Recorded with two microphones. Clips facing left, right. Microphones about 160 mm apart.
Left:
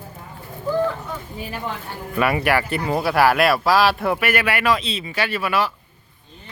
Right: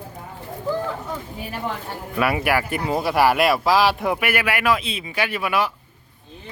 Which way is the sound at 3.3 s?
20° right (ahead or behind).